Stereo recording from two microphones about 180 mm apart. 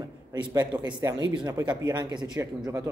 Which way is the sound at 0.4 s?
25° right (ahead or behind).